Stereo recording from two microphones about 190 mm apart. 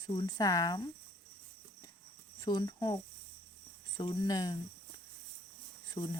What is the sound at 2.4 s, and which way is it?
Speech, 20° left (ahead or behind).